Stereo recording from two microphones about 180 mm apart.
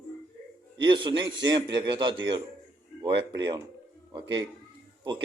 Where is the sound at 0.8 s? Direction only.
25° right (ahead or behind).